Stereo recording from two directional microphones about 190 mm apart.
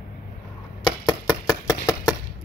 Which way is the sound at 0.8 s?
20° left (ahead or behind).